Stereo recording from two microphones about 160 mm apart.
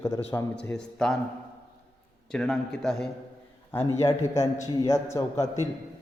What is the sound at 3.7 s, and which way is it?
A man's voice, 15° left (ahead or behind).